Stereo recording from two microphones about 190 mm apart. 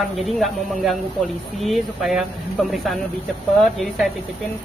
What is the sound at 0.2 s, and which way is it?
Speech, centre (ahead or behind).